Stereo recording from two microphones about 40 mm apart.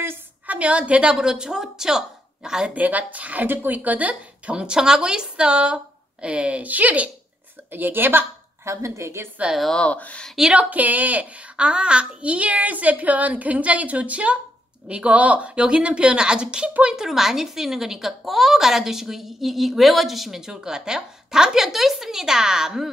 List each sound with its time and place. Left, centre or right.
0.5 s a woman's voice: right
1.1 s a woman's voice: centre
2.7 s a woman's voice: right
3.4 s speech: right
4.6 s speech: centre
6.6 s a woman's voice: right
7.7 s a woman's voice: right
9.4 s a woman's voice: right
9.9 s a woman's voice: left
10.5 s a woman's voice: right
17.0 s a woman's voice: centre